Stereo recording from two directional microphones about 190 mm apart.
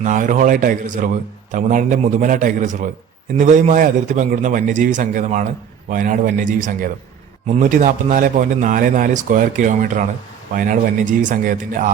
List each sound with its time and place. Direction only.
0.0 s a man's voice: 40° right (ahead or behind)